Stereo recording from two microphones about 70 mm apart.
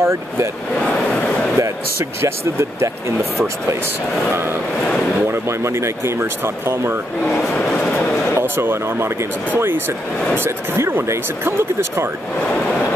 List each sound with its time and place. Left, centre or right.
0.0 s speech: right
0.7 s a sound: centre
5.3 s speech: right
7.4 s train: centre
8.4 s speech: right
12.5 s train: centre